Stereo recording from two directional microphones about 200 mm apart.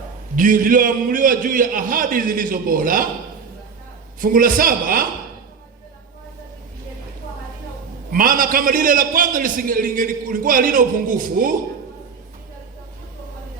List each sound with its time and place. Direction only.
0.3 s a man's voice: 40° right (ahead or behind)
4.2 s a man's voice: 45° right (ahead or behind)
8.1 s a man's voice: 45° right (ahead or behind)